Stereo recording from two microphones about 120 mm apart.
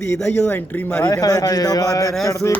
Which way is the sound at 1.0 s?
30° left (ahead or behind).